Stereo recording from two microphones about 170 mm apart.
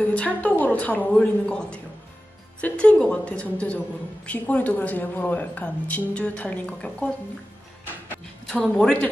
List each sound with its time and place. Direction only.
0.1 s speech: 10° left (ahead or behind)
8.5 s speech: 5° left (ahead or behind)